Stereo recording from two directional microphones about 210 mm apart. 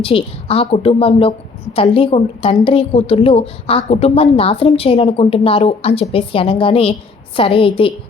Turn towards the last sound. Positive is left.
turn(degrees=25)  # may be behind; listen again after turning